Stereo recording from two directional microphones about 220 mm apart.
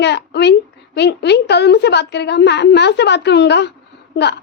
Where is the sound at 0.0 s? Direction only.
50° left (ahead or behind).